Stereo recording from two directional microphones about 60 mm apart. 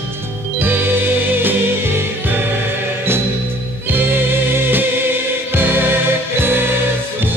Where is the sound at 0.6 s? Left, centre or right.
Right.